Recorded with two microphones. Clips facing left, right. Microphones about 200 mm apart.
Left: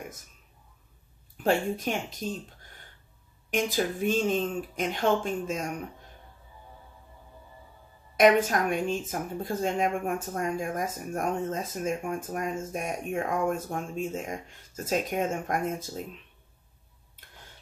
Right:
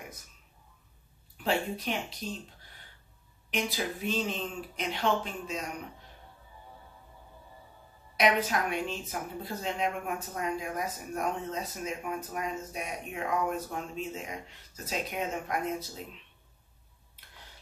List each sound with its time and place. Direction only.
1.4 s speech: 45° left (ahead or behind)
3.4 s speech: 45° left (ahead or behind)
8.2 s speech: 50° left (ahead or behind)